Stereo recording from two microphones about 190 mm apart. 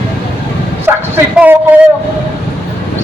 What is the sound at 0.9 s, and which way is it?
Bow-wow, 10° right (ahead or behind).